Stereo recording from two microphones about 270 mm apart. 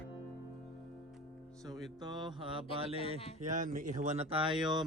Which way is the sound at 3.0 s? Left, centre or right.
Left.